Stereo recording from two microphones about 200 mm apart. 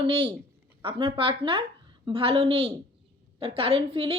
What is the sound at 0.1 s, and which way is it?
Speech, 25° right (ahead or behind).